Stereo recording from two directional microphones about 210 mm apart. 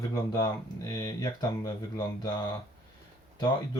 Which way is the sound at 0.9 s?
20° left (ahead or behind).